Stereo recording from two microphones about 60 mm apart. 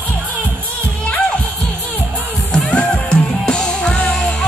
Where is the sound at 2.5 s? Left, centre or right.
Centre.